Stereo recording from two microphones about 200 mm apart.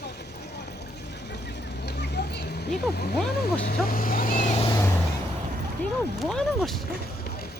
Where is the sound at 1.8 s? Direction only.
55° left (ahead or behind).